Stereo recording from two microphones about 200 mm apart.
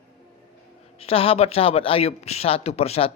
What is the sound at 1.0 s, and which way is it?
A man's voice, 30° left (ahead or behind).